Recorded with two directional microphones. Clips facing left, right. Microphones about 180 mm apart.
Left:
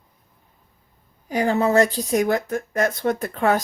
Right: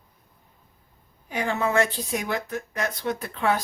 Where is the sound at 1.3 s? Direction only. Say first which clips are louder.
Left 6 dB; 35° left (ahead or behind).